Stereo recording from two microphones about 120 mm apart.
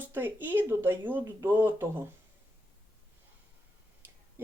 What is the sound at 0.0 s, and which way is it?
Speech, 20° right (ahead or behind).